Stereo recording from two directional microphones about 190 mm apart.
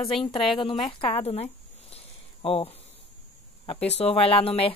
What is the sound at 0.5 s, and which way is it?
A woman's voice, 25° left (ahead or behind).